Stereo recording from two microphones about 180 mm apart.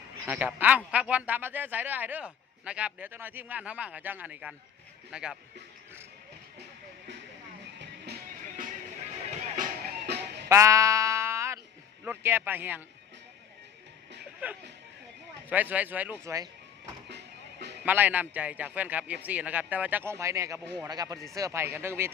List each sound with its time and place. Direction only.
0.3 s a man's voice: 10° right (ahead or behind)
7.8 s music: 65° right (ahead or behind)
10.5 s sheep: 15° right (ahead or behind)
12.0 s a man's voice: 10° right (ahead or behind)
14.4 s a man's voice: 10° right (ahead or behind)
17.1 s music: 70° right (ahead or behind)
17.8 s a man's voice: 10° right (ahead or behind)